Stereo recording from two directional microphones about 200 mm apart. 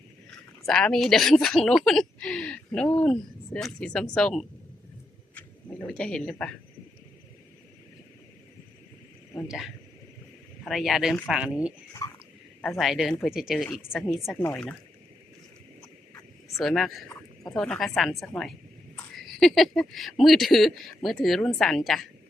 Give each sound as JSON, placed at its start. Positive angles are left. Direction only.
{"t": 0.7, "sound": "a woman's voice", "side_deg": 5}
{"t": 10.6, "sound": "a woman's voice", "side_deg": 0}
{"t": 12.0, "sound": "a sound", "side_deg": 20}
{"t": 12.6, "sound": "a woman's voice", "side_deg": 0}
{"t": 16.6, "sound": "a woman's voice", "side_deg": 0}